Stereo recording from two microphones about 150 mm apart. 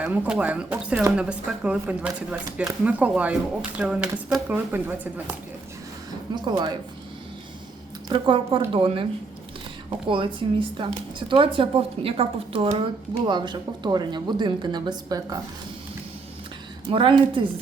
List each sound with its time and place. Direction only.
0.0 s speech: 10° right (ahead or behind)
6.3 s speech: 30° right (ahead or behind)
8.1 s a woman's voice: 30° right (ahead or behind)
10.1 s a woman's voice: 35° right (ahead or behind)
16.8 s a woman's voice: 35° right (ahead or behind)